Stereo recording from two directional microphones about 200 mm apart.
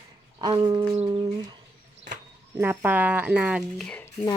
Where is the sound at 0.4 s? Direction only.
20° right (ahead or behind).